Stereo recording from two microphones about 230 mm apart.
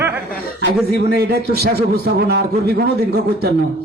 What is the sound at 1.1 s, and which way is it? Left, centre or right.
A man's voice, right.